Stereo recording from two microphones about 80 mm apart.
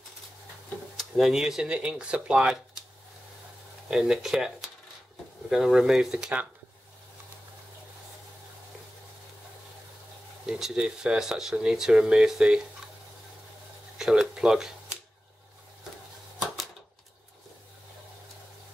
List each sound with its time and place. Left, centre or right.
0.9 s speech: centre
3.9 s speech: centre
10.4 s speech: centre
13.9 s speech: centre